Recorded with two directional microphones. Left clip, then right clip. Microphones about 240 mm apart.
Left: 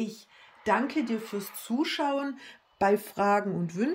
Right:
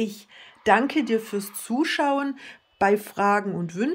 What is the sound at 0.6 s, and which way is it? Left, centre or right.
Speech, centre.